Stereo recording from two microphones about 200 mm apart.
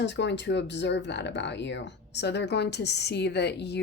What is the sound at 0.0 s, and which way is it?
Speech, 60° left (ahead or behind).